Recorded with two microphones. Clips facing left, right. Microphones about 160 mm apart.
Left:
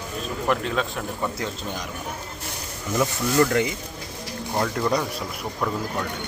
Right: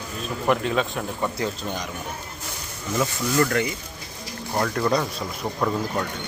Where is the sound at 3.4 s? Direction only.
20° left (ahead or behind).